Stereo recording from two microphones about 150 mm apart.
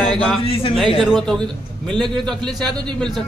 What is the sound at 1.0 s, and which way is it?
A man's voice, centre (ahead or behind).